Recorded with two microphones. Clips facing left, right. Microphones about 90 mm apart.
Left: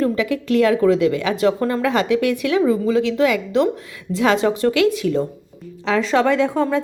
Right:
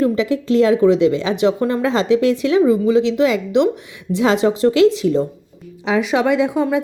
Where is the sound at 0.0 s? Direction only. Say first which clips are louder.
Right 3 dB; 25° right (ahead or behind).